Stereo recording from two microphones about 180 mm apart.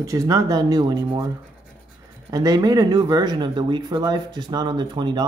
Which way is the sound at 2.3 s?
20° right (ahead or behind).